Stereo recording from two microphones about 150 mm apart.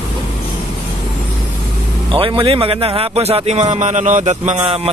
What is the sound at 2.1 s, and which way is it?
Speech, 35° right (ahead or behind).